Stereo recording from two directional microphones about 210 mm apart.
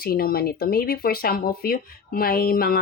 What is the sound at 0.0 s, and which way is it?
Speech, 45° left (ahead or behind).